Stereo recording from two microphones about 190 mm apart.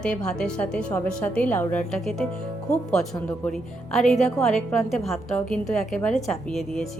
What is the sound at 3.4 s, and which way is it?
A woman's voice, centre (ahead or behind).